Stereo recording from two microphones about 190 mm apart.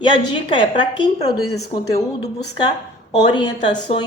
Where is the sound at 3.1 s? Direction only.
20° left (ahead or behind).